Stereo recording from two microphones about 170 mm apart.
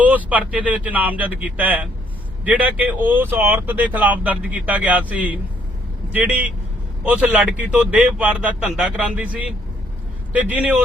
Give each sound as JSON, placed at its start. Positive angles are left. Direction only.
{"t": 0.0, "sound": "speech", "side_deg": -10}